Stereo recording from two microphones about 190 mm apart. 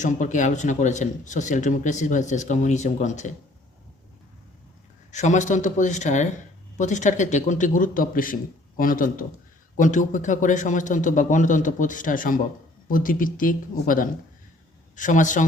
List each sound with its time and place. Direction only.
0.0 s speech: 40° left (ahead or behind)
5.1 s speech: 40° left (ahead or behind)